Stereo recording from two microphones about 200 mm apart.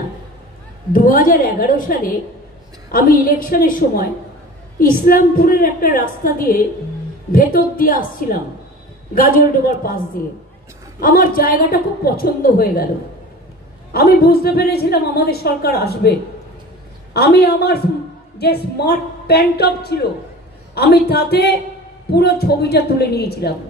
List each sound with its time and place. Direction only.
0.9 s a woman's voice: 45° left (ahead or behind)
11.0 s a woman's voice: 45° left (ahead or behind)
13.9 s a woman's voice: 50° left (ahead or behind)